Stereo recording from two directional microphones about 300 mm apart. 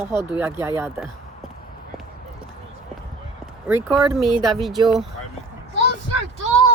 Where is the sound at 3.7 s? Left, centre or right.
Centre.